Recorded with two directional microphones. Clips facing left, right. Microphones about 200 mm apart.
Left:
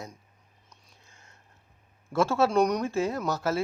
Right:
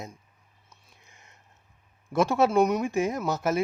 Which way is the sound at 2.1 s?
20° right (ahead or behind).